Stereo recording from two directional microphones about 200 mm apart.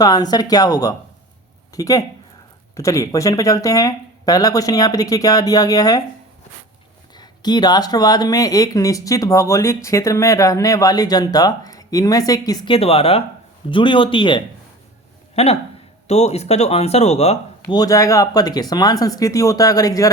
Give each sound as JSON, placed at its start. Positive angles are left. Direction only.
{"t": 0.0, "sound": "speech", "side_deg": 20}
{"t": 7.2, "sound": "speech", "side_deg": 20}
{"t": 17.6, "sound": "speech", "side_deg": 20}